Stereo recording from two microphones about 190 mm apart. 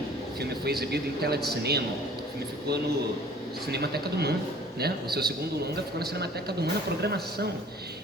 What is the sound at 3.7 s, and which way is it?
Speech, 60° right (ahead or behind).